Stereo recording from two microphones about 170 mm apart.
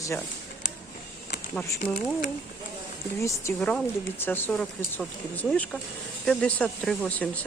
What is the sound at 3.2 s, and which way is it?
Speech, 20° left (ahead or behind).